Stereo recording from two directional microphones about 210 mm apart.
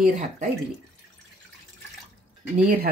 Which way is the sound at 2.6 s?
40° right (ahead or behind).